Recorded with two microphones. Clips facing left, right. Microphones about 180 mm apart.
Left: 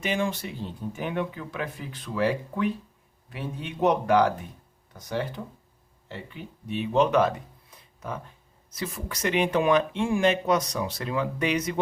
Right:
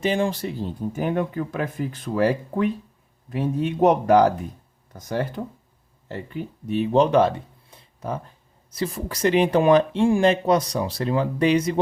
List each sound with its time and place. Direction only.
0.0 s speech: 35° right (ahead or behind)